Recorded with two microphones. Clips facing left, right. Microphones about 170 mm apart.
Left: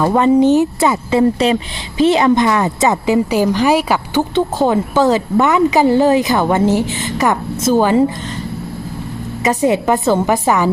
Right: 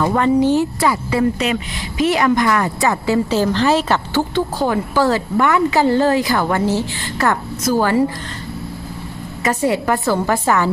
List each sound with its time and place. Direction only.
0.0 s speech: 20° left (ahead or behind)
9.4 s a woman's voice: 20° left (ahead or behind)